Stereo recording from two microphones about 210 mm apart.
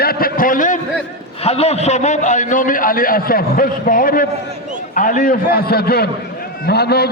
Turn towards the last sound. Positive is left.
turn(degrees=50)  # may be behind; listen again after turning